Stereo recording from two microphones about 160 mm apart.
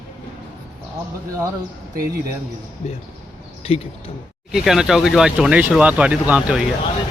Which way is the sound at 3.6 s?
40° left (ahead or behind).